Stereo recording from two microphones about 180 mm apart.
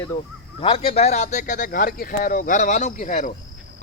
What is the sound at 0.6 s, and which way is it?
A man's voice, 30° left (ahead or behind).